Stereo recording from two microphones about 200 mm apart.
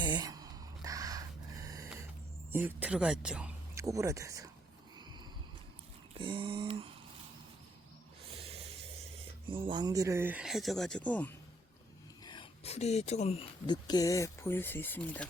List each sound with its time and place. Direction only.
0.0 s gasp: 20° right (ahead or behind)
2.5 s speech: 10° right (ahead or behind)
4.9 s a sound: 20° right (ahead or behind)
8.3 s a sound: 30° right (ahead or behind)
9.5 s speech: 25° right (ahead or behind); by 11.3 s 5° left (ahead or behind)
12.2 s speech: 25° left (ahead or behind)